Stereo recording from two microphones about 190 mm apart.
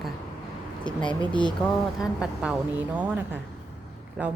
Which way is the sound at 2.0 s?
5° right (ahead or behind).